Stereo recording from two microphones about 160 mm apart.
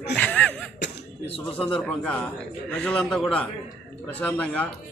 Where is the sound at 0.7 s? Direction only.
90° left.